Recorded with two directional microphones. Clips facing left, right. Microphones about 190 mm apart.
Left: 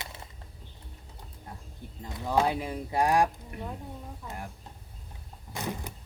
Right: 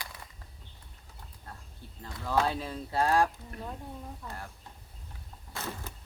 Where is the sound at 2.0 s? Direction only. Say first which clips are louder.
Left 2 dB; 20° left (ahead or behind).